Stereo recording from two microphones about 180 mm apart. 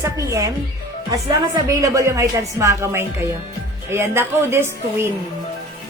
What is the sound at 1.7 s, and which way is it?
A woman's voice, 15° right (ahead or behind).